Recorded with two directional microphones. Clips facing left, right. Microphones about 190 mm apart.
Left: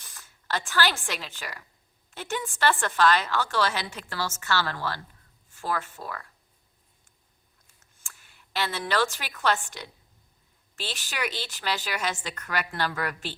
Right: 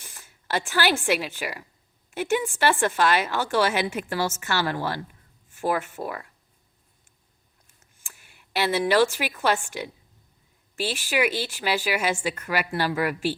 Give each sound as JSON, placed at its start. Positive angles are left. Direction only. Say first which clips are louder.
{"t": 0.0, "sound": "a woman's voice", "louder": "right 3 dB", "side_deg": -15}
{"t": 8.0, "sound": "a sound", "louder": "right 1 dB", "side_deg": -15}
{"t": 9.4, "sound": "a woman's voice", "louder": "right 2 dB", "side_deg": -10}